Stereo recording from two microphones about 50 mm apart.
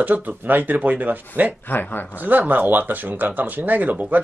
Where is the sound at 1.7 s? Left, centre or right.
Left.